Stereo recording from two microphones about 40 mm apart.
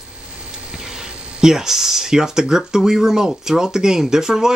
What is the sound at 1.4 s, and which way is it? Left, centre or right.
Speech, centre.